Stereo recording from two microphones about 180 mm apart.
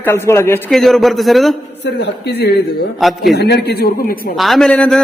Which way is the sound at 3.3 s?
65° left (ahead or behind).